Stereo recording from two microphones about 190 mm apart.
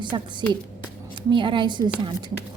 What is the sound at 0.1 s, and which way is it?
Speech, 25° right (ahead or behind).